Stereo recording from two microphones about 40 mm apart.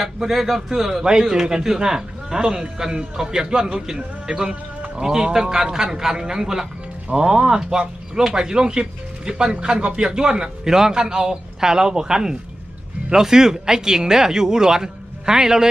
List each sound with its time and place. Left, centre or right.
0.0 s speech: centre